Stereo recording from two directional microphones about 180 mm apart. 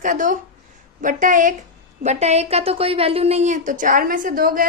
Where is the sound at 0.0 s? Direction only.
45° right (ahead or behind).